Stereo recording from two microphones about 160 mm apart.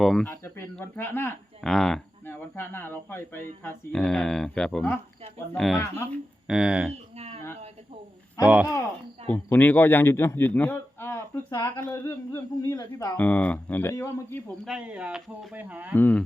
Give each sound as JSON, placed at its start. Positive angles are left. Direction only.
{"t": 0.0, "sound": "speech", "side_deg": 0}
{"t": 0.3, "sound": "speech", "side_deg": 15}
{"t": 1.6, "sound": "speech", "side_deg": 0}
{"t": 2.2, "sound": "speech", "side_deg": 15}
{"t": 9.2, "sound": "a man's voice", "side_deg": 10}
{"t": 13.1, "sound": "speech", "side_deg": 10}
{"t": 14.6, "sound": "speech", "side_deg": -5}
{"t": 16.0, "sound": "speech", "side_deg": 10}